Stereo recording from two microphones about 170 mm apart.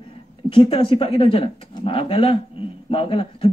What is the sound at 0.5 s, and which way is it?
A man's voice, 30° left (ahead or behind).